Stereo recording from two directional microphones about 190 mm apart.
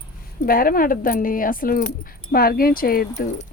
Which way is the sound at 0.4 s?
50° left (ahead or behind).